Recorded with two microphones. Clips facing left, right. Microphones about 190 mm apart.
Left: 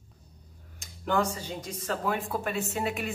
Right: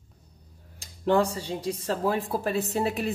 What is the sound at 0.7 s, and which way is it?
Speech, 35° right (ahead or behind).